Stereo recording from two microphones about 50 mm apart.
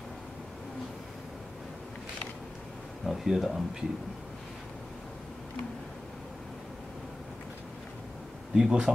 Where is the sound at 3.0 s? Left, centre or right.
Centre.